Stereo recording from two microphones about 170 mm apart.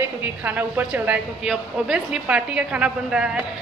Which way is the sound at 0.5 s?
10° right (ahead or behind).